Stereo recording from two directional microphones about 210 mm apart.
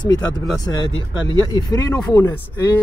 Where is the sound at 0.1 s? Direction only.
20° left (ahead or behind).